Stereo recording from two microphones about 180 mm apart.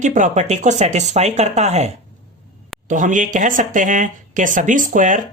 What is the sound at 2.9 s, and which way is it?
Speech, 45° right (ahead or behind).